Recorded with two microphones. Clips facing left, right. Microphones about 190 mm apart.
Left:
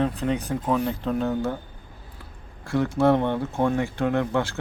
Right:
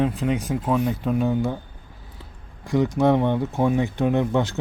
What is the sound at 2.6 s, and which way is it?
Speech, 15° right (ahead or behind).